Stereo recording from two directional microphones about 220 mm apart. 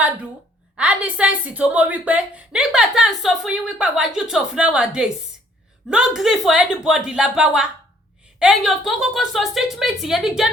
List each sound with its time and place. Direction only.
0.8 s a woman's voice: 5° right (ahead or behind)